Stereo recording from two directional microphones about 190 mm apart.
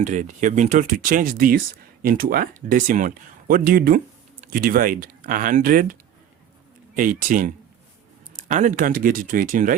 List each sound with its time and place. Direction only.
0.0 s speech: 40° right (ahead or behind)